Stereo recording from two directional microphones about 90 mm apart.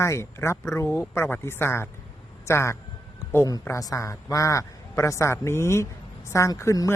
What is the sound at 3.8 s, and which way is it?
A man's voice, 35° left (ahead or behind).